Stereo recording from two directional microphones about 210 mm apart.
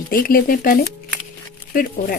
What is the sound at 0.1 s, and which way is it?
Speech, 45° left (ahead or behind).